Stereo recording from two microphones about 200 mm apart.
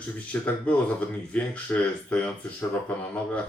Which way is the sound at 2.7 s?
10° left (ahead or behind).